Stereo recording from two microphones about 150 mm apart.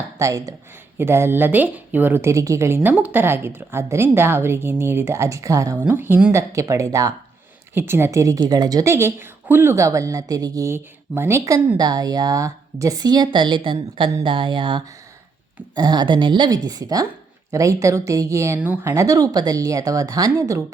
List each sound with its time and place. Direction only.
0.2 s a woman's voice: 20° right (ahead or behind)